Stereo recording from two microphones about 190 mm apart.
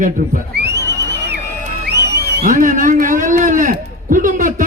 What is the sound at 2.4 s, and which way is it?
A man's voice, 45° right (ahead or behind).